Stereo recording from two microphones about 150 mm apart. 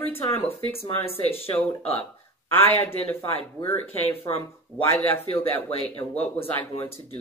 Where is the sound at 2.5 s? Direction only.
15° left (ahead or behind).